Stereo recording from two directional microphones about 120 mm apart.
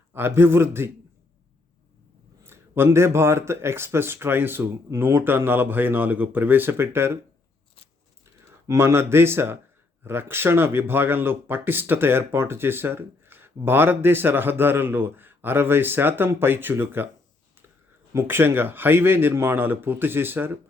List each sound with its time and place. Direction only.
0.1 s speech: 20° right (ahead or behind)
2.4 s speech: 20° right (ahead or behind)
8.6 s speech: 25° right (ahead or behind)
18.1 s speech: 20° right (ahead or behind)